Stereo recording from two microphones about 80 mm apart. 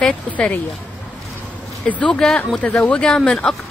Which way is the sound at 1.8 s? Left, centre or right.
Centre.